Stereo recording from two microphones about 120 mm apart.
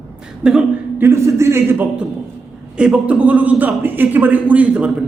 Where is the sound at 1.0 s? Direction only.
20° right (ahead or behind).